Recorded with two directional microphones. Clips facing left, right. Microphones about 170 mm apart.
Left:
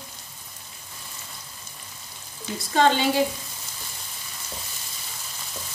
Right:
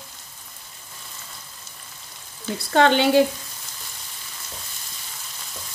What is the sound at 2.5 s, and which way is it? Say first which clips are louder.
Speech: right 3 dB; 65° right (ahead or behind).